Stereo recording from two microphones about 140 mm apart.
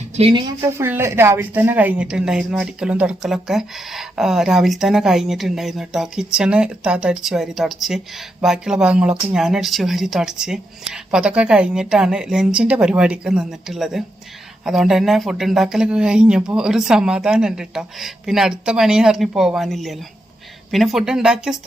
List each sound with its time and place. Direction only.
0.2 s a woman's voice: 35° right (ahead or behind)
0.8 s speech: 15° right (ahead or behind)